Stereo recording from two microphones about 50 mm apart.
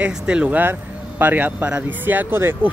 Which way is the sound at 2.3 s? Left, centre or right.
Right.